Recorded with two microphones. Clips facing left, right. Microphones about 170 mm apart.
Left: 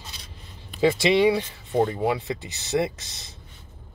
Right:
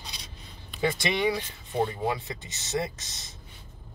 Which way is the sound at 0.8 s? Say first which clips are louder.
Left 8 dB; 25° left (ahead or behind).